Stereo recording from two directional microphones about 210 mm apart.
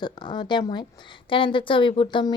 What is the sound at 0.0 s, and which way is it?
Speech, 20° left (ahead or behind).